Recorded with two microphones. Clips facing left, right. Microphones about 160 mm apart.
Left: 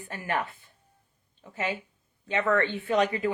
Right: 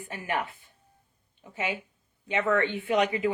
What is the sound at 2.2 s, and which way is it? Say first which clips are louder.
A woman's voice: even; 15° right (ahead or behind).